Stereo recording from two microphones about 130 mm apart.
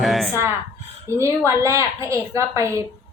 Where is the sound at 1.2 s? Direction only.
20° right (ahead or behind).